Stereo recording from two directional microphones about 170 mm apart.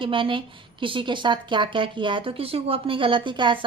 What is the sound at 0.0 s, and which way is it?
Speech, 30° right (ahead or behind).